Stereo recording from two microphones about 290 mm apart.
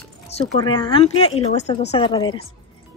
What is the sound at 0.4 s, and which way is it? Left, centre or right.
Speech, centre.